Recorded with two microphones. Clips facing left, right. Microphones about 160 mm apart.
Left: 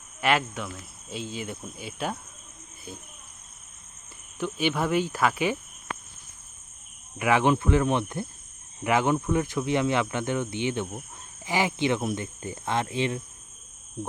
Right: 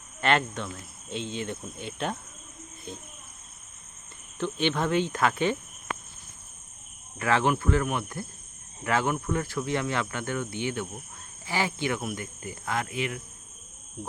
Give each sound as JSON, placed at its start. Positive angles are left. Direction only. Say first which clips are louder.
{"t": 0.2, "sound": "cricket", "louder": "even", "side_deg": 5}
{"t": 1.1, "sound": "speech", "louder": "right 1 dB", "side_deg": 5}
{"t": 4.4, "sound": "cricket", "louder": "even", "side_deg": 10}
{"t": 7.2, "sound": "speech", "louder": "left 3 dB", "side_deg": 15}